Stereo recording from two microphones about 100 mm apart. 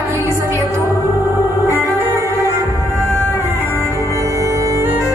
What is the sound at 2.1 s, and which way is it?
Music, 30° right (ahead or behind).